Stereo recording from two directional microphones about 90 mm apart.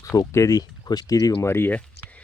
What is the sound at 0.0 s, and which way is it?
Speech, 40° left (ahead or behind).